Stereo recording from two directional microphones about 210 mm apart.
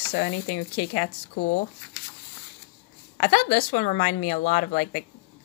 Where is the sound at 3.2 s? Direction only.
35° left (ahead or behind).